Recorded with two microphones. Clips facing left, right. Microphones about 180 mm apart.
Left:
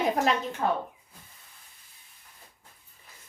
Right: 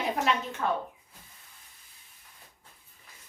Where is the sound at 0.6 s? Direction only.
35° left (ahead or behind).